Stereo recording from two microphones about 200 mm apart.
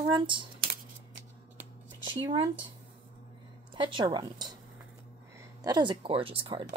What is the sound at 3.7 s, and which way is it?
Speech, 25° right (ahead or behind).